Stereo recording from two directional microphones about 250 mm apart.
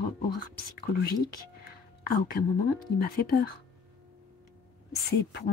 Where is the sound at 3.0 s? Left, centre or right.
Left.